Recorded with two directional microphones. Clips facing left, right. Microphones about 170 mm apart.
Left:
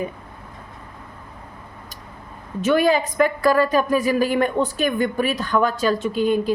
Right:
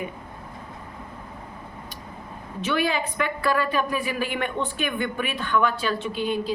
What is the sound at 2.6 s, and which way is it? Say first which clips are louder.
A woman's voice: left 7 dB; 45° left (ahead or behind).